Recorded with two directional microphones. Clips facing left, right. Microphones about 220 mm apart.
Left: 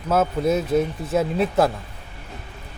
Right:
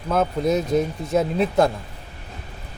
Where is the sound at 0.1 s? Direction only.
5° left (ahead or behind).